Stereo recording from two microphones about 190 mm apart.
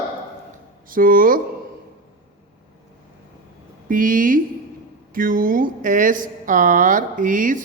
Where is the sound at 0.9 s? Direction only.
45° right (ahead or behind).